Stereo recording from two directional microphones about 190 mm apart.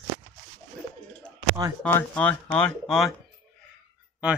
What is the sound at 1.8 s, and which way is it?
Speech, 10° left (ahead or behind).